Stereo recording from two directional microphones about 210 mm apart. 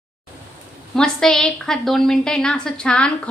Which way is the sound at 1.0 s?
5° left (ahead or behind).